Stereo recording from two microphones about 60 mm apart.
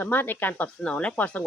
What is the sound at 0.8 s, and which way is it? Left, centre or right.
Speech, centre.